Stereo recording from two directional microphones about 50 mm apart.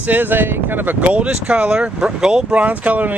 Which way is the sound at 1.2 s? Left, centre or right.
Right.